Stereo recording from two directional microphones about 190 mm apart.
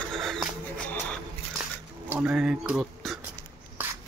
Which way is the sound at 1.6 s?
5° right (ahead or behind).